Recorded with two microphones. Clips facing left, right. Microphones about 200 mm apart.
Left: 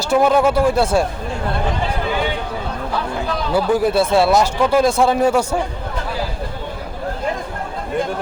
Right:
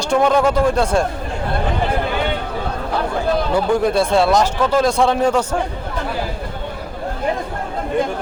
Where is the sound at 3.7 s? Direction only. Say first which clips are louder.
Left 1 dB; 5° left (ahead or behind).